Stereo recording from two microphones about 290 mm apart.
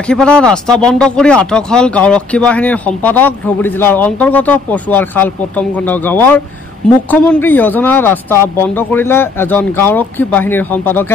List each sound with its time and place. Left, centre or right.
0.1 s speech: centre